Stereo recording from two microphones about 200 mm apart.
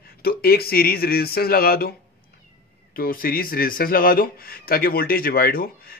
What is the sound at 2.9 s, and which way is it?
Speech, 45° left (ahead or behind).